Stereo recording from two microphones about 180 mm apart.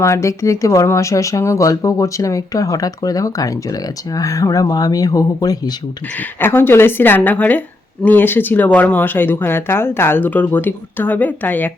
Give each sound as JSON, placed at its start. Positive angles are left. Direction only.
{"t": 0.0, "sound": "speech", "side_deg": 15}